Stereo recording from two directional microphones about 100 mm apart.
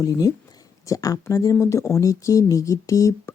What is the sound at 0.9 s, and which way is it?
Speech, 35° left (ahead or behind).